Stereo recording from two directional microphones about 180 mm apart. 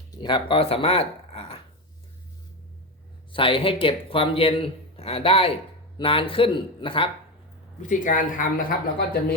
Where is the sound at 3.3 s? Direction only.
30° left (ahead or behind).